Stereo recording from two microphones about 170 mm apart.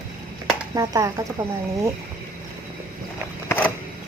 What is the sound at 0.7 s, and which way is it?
Speech, 20° right (ahead or behind).